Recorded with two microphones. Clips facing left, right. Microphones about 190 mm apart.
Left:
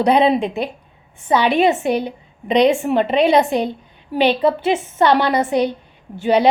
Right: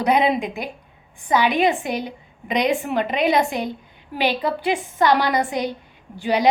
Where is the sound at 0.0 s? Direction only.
30° left (ahead or behind).